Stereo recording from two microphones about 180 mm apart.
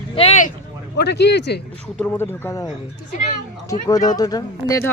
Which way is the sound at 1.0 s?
70° left (ahead or behind).